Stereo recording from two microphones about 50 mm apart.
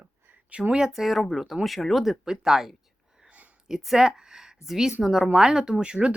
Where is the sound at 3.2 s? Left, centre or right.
Right.